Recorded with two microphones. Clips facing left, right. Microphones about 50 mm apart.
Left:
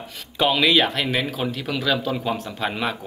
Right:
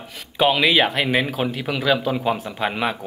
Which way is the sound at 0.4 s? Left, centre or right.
Centre.